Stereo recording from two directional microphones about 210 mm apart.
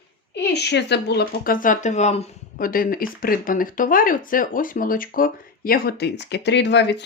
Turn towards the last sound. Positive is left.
turn(degrees=55)  # may be behind; listen again after turning